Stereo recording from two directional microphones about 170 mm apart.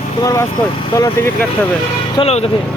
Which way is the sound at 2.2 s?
40° left (ahead or behind).